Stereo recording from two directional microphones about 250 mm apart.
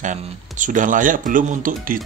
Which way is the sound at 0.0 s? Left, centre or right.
Right.